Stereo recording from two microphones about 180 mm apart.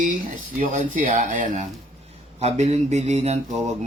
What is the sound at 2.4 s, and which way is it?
Speech, 35° right (ahead or behind).